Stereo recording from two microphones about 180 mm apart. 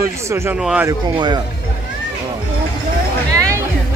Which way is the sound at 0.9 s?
25° right (ahead or behind).